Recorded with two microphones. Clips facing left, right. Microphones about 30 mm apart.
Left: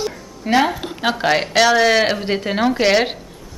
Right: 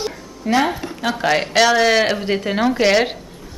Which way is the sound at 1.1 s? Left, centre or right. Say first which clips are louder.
Even; centre.